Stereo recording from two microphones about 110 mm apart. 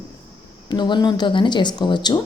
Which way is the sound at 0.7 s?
45° left (ahead or behind).